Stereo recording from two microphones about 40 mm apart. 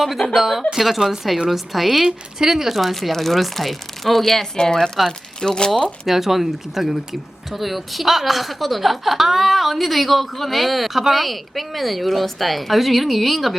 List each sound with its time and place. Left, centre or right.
0.3 s speech: centre
6.1 s speech: centre